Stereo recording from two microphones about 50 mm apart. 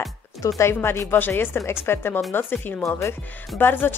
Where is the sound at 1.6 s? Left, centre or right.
Left.